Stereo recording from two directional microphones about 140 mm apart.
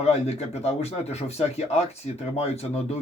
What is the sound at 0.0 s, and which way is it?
Speech, 45° left (ahead or behind).